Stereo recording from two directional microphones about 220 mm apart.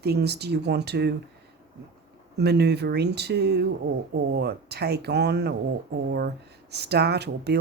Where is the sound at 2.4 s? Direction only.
50° right (ahead or behind).